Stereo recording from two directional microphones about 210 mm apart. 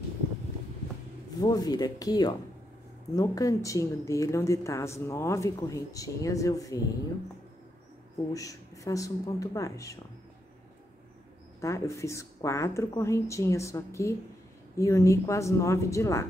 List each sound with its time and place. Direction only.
1.4 s a woman's voice: 20° left (ahead or behind)
8.3 s a woman's voice: 15° left (ahead or behind)
11.6 s a woman's voice: 15° left (ahead or behind)